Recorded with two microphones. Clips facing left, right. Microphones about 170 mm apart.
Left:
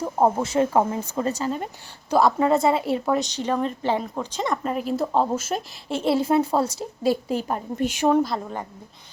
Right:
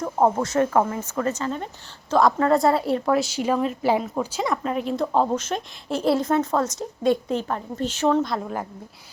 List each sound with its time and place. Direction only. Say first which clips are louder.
0.0 s a sound: even; 10° left (ahead or behind)
0.4 s speech: even; 25° left (ahead or behind)
1.4 s a woman's voice: left 1 dB; 10° left (ahead or behind)